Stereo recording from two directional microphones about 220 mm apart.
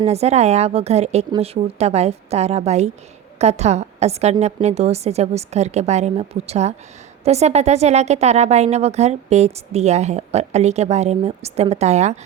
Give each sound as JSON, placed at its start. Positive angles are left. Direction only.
{"t": 0.0, "sound": "a woman's voice", "side_deg": -30}